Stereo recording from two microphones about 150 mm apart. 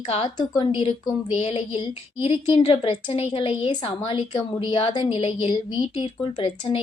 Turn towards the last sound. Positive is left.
turn(degrees=35)  # may be behind; listen again after turning